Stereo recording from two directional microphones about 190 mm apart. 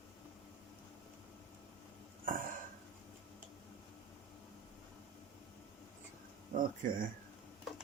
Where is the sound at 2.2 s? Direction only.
45° right (ahead or behind).